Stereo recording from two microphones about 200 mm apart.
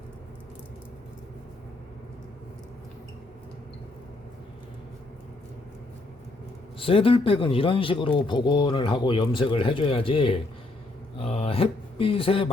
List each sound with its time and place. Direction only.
6.7 s speech: 25° left (ahead or behind)